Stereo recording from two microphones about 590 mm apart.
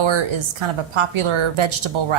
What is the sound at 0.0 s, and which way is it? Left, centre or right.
A woman's voice, right.